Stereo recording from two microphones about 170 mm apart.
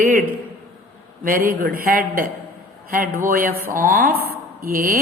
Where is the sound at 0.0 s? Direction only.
50° right (ahead or behind).